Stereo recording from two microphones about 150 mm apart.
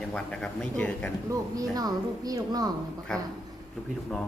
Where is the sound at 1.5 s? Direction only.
25° right (ahead or behind).